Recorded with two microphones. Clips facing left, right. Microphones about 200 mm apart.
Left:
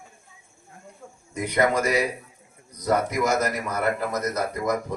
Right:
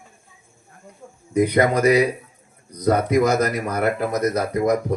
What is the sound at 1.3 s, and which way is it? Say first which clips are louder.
Speech: right 5 dB; 65° right (ahead or behind).